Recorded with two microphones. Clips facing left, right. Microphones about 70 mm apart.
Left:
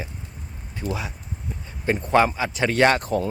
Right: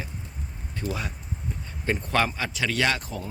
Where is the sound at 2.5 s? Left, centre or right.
Left.